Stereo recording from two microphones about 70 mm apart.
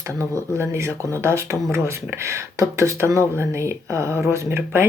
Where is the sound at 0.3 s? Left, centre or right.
Right.